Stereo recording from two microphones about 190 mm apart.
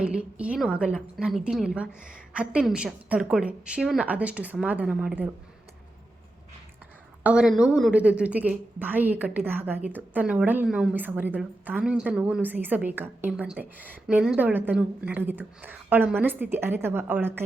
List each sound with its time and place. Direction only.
0.0 s a woman's voice: 5° right (ahead or behind)
7.3 s a woman's voice: 5° right (ahead or behind)